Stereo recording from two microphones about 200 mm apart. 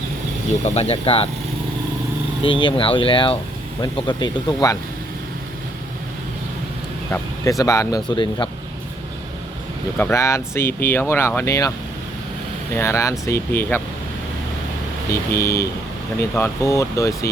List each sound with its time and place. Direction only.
0.6 s speech: 30° left (ahead or behind)
2.4 s speech: 25° left (ahead or behind)
7.6 s speech: 15° left (ahead or behind)
10.0 s speech: 15° left (ahead or behind)
12.7 s speech: 15° left (ahead or behind)
15.1 s speech: 15° left (ahead or behind)